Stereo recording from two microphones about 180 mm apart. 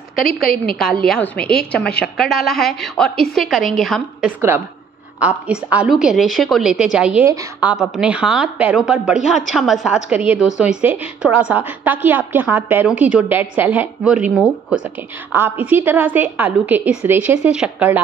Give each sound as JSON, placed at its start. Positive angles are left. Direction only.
{"t": 0.2, "sound": "a woman's voice", "side_deg": 55}
{"t": 0.7, "sound": "a woman's voice", "side_deg": 5}